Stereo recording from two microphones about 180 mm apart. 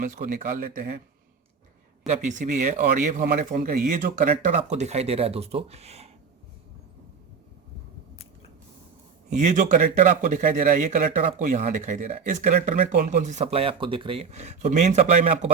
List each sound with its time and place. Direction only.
0.0 s speech: 45° right (ahead or behind)
2.0 s speech: 45° right (ahead or behind)
9.3 s speech: 45° right (ahead or behind)